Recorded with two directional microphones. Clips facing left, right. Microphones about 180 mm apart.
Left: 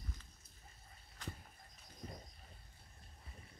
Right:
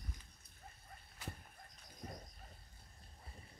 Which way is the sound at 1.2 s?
10° right (ahead or behind).